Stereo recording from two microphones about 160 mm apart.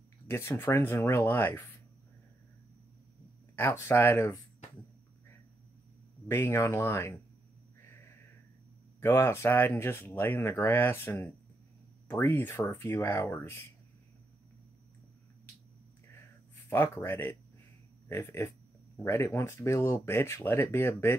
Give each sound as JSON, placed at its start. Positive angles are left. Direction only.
{"t": 0.3, "sound": "speech", "side_deg": 15}
{"t": 3.5, "sound": "speech", "side_deg": 15}
{"t": 6.2, "sound": "speech", "side_deg": 15}
{"t": 9.0, "sound": "speech", "side_deg": 15}
{"t": 16.6, "sound": "speech", "side_deg": 15}